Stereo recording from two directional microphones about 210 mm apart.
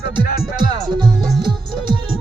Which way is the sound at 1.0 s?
20° right (ahead or behind).